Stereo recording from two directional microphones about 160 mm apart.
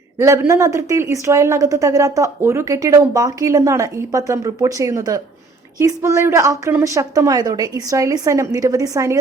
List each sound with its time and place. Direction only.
0.2 s a woman's voice: 20° right (ahead or behind)